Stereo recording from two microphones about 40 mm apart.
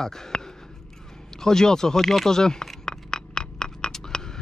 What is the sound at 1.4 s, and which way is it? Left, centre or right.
Speech, centre.